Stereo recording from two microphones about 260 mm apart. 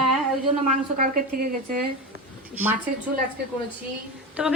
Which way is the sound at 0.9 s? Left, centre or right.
Right.